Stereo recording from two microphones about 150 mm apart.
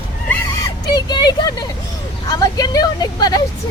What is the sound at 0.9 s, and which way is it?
Vehicle, 30° left (ahead or behind).